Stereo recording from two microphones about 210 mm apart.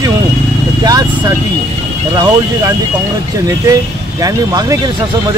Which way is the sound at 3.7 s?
15° right (ahead or behind).